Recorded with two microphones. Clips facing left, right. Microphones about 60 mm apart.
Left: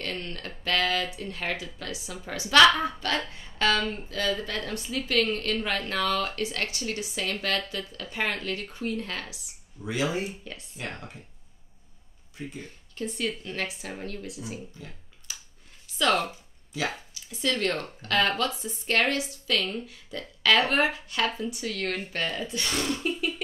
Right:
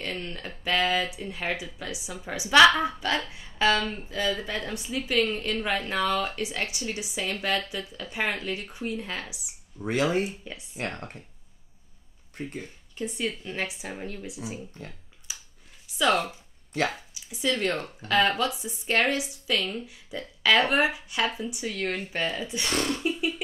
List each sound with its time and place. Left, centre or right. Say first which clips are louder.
0.0 s a woman's voice: even; centre
9.8 s speech: right 4 dB; right
10.2 s a woman's voice: right 1 dB; centre
12.4 s speech: right 3 dB; right
12.9 s a woman's voice: even; centre
15.3 s a sound: even; centre
16.0 s a woman's voice: right 1 dB; centre
22.8 s a sound: right 1 dB; centre